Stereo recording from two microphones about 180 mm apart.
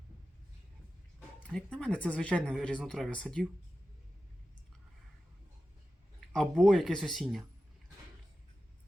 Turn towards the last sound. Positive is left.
turn(degrees=0)  # may be behind; listen again after turning